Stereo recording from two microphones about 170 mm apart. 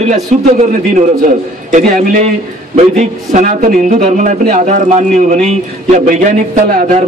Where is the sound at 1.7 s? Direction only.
45° right (ahead or behind).